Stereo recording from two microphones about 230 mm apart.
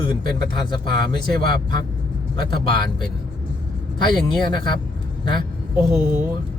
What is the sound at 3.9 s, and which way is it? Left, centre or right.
Speech, centre.